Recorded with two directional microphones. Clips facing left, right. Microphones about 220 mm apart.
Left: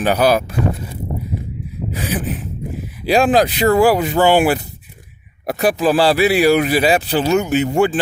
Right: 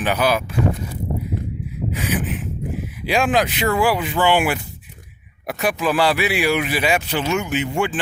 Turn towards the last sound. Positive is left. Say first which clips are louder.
# left 6 dB
turn(degrees=40)  # may be behind; listen again after turning